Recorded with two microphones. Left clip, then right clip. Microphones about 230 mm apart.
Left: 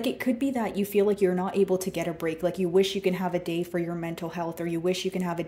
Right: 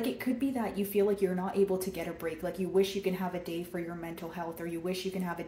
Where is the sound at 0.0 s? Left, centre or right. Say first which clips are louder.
Left 5 dB; left.